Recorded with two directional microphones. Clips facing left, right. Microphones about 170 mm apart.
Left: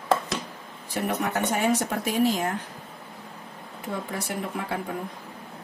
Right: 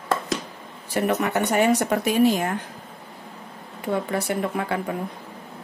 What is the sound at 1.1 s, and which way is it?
Speech, 70° right (ahead or behind).